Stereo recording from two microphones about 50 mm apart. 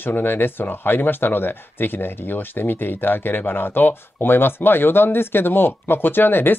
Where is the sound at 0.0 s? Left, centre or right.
Left.